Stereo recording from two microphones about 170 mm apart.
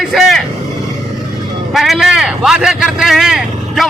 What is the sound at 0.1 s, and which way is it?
Vehicle, centre (ahead or behind).